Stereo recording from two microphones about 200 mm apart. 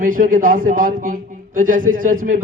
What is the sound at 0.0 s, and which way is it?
A man's voice, 45° right (ahead or behind).